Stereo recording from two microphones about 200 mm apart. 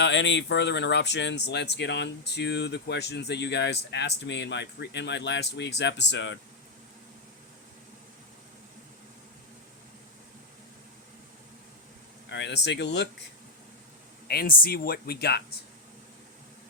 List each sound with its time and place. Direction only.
0.0 s speech: 65° left (ahead or behind)
12.3 s speech: 60° left (ahead or behind)
14.3 s speech: 50° left (ahead or behind)